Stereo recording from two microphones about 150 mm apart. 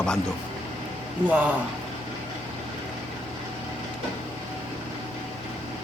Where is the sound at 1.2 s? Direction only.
10° right (ahead or behind).